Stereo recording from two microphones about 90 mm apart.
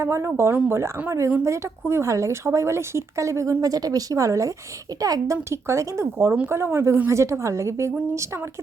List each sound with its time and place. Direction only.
0.0 s a woman's voice: 30° right (ahead or behind)
7.1 s speech: 35° right (ahead or behind)